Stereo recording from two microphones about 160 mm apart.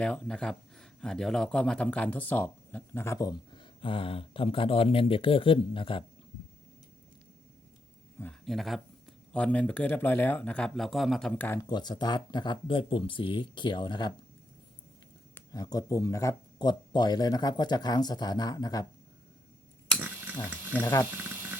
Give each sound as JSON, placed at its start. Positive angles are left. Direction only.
{"t": 0.0, "sound": "speech", "side_deg": 5}
{"t": 8.2, "sound": "speech", "side_deg": 5}
{"t": 11.6, "sound": "speech", "side_deg": 25}
{"t": 15.4, "sound": "speech", "side_deg": 20}
{"t": 20.0, "sound": "a sound", "side_deg": -10}
{"t": 20.8, "sound": "speech", "side_deg": 15}
{"t": 21.1, "sound": "a sound", "side_deg": -10}